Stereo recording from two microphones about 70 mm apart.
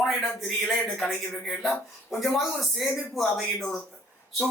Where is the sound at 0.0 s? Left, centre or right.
Centre.